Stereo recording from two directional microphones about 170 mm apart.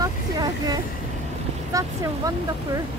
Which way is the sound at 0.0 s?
25° right (ahead or behind).